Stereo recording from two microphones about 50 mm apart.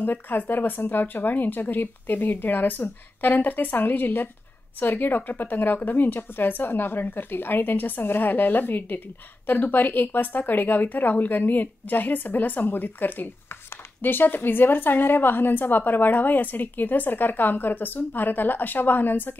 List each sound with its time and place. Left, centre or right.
0.0 s a woman's voice: left